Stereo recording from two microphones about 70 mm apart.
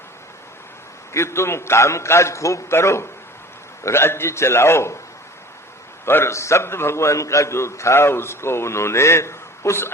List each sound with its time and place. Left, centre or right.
1.1 s a man's voice: left
6.1 s a man's voice: left